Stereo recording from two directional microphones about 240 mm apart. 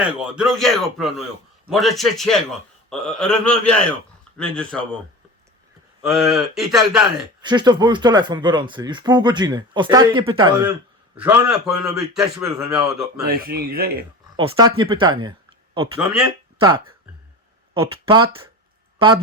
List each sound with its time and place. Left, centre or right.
0.2 s a man's voice: centre
6.0 s a man's voice: centre
7.4 s speech: centre
11.2 s a man's voice: centre
13.2 s a man's voice: right
14.3 s speech: right
16.0 s speech: centre
16.6 s speech: right